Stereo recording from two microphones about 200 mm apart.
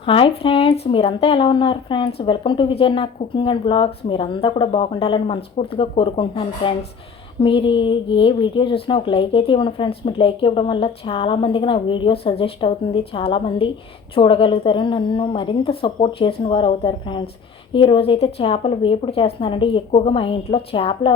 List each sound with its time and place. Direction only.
0.0 s speech: 25° left (ahead or behind)